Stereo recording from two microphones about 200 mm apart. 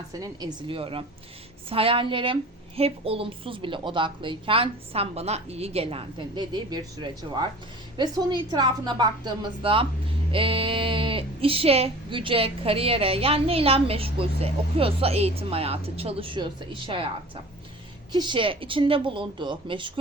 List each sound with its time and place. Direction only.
0.2 s speech: 20° right (ahead or behind)
18.1 s speech: 20° right (ahead or behind)